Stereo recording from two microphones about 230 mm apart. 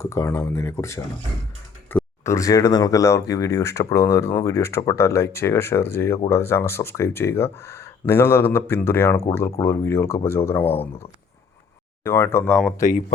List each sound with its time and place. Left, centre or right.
0.0 s speech: centre
12.0 s speech: centre
12.8 s speech: left